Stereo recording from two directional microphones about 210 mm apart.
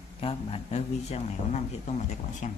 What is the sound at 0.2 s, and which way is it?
Speech, 25° left (ahead or behind).